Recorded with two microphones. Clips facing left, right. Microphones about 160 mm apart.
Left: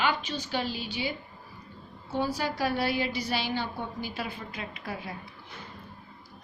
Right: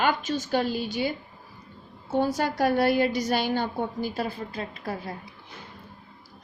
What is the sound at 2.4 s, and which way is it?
A woman's voice, 50° right (ahead or behind).